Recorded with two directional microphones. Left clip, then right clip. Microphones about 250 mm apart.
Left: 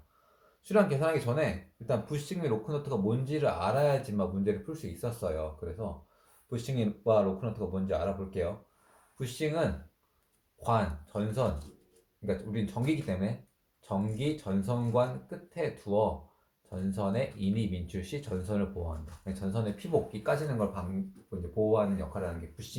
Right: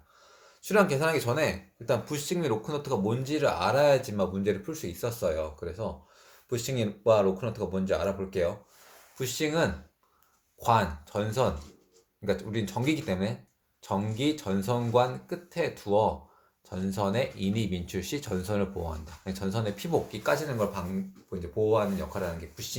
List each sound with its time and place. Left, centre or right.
0.6 s speech: right